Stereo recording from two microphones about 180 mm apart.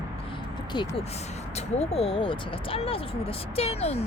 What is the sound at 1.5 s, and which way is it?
Speech, 35° left (ahead or behind).